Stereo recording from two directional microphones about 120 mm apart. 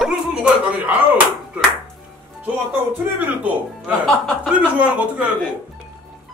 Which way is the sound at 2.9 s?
15° right (ahead or behind).